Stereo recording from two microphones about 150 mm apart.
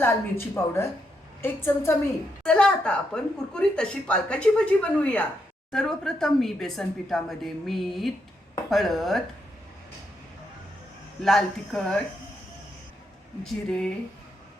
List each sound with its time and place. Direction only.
0.0 s a woman's voice: 15° left (ahead or behind)
11.2 s a woman's voice: centre (ahead or behind)
13.4 s a woman's voice: 5° left (ahead or behind)